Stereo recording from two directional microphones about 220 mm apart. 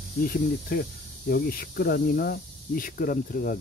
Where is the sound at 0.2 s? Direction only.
40° left (ahead or behind).